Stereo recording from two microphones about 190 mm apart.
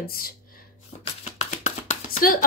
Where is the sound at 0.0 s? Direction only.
50° left (ahead or behind).